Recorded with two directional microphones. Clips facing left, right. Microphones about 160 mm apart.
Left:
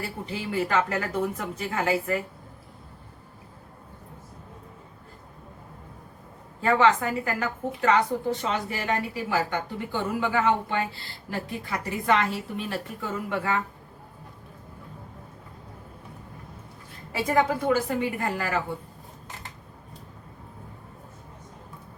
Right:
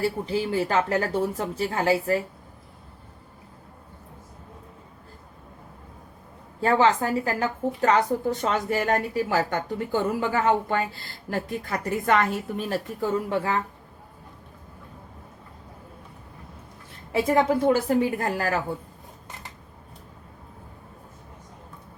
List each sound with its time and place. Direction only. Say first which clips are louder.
0.3 s a woman's voice: right 3 dB; 30° right (ahead or behind)
6.6 s a woman's voice: right 1 dB; 35° right (ahead or behind)
17.7 s a woman's voice: right 4 dB; 30° right (ahead or behind)